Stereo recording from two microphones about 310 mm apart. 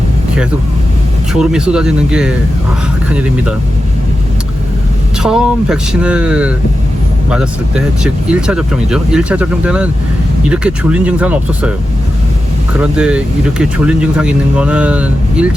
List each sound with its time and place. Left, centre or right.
1.3 s speech: centre
5.2 s speech: centre
8.0 s speech: centre
12.8 s speech: centre